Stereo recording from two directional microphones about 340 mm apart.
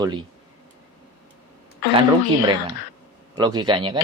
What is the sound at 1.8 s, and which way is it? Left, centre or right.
Speech, left.